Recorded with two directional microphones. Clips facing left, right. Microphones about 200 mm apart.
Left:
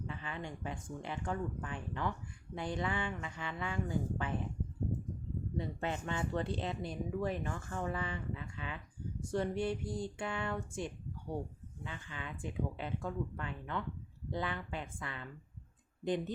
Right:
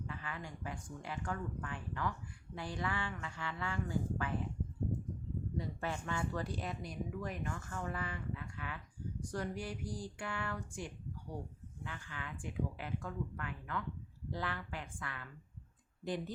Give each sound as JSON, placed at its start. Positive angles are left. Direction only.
{"t": 0.1, "sound": "speech", "side_deg": 20}
{"t": 5.5, "sound": "speech", "side_deg": 25}